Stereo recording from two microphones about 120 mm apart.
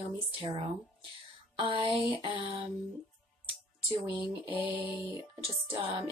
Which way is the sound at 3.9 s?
45° right (ahead or behind).